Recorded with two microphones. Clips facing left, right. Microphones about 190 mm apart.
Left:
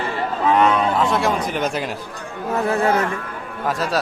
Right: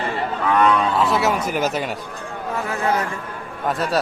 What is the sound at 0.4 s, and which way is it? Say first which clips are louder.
Speech: left 1 dB; 25° left (ahead or behind).